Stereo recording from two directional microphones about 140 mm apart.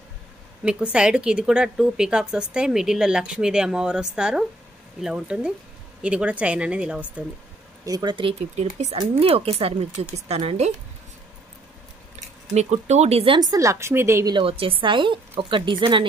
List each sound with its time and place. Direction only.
0.6 s speech: 5° right (ahead or behind)
7.8 s speech: 30° right (ahead or behind); by 10.7 s 45° right (ahead or behind)
12.5 s a woman's voice: 55° right (ahead or behind); by 14.3 s 20° right (ahead or behind)
14.3 s speech: 40° right (ahead or behind)